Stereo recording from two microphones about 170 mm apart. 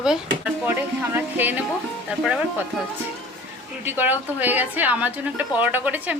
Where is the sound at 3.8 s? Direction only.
10° right (ahead or behind).